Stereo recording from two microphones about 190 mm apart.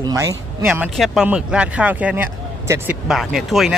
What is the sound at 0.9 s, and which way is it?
Speech, centre (ahead or behind).